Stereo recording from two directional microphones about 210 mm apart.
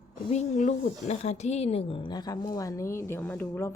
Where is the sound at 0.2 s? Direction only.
35° left (ahead or behind).